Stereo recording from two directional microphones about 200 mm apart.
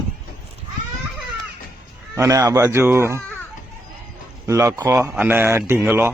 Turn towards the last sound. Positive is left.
turn(degrees=-10)  # may be behind; listen again after turning